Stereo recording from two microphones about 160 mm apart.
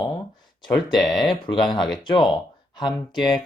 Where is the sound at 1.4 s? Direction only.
30° left (ahead or behind).